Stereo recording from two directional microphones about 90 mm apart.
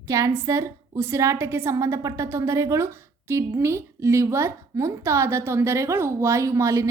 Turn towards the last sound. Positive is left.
turn(degrees=-35)  # may be behind; listen again after turning